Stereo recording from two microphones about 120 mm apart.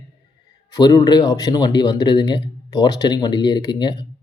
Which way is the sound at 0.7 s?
35° left (ahead or behind).